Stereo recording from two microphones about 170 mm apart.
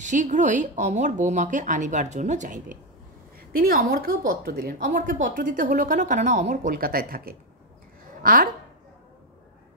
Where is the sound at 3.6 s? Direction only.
60° right (ahead or behind).